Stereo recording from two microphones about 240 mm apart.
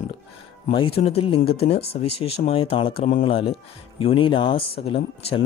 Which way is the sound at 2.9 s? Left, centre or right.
Left.